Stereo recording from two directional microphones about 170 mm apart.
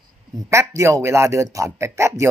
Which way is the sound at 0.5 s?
15° right (ahead or behind).